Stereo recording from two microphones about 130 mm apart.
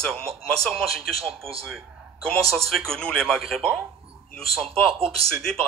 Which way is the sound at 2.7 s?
5° left (ahead or behind).